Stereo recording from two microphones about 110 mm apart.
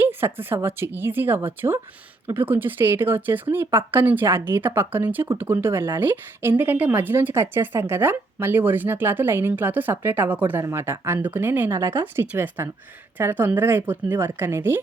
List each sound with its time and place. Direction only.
0.0 s a woman's voice: 20° right (ahead or behind)